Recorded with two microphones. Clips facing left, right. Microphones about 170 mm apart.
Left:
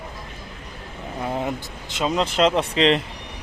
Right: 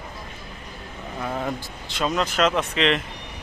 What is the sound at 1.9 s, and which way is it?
Speech, 20° left (ahead or behind).